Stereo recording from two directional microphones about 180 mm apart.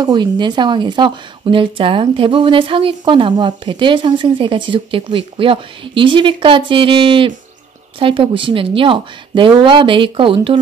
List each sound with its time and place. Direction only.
0.0 s speech: 25° right (ahead or behind)